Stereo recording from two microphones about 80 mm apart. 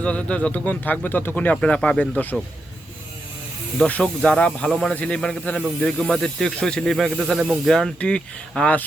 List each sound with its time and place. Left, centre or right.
0.0 s speech: centre
3.8 s speech: centre
7.2 s speech: centre
7.6 s speech: centre